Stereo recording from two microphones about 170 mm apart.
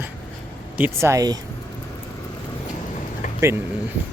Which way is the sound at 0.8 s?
15° right (ahead or behind).